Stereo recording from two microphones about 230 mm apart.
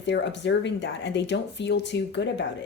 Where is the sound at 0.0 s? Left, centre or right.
Left.